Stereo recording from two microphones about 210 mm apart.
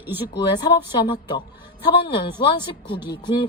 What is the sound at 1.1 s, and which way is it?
Speech, 20° left (ahead or behind).